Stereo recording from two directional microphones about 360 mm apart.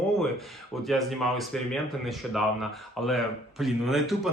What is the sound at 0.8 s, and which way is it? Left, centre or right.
Speech, centre.